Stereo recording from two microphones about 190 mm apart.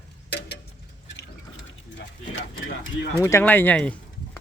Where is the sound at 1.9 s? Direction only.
70° left (ahead or behind).